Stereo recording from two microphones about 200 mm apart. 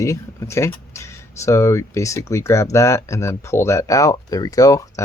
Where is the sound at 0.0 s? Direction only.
15° left (ahead or behind).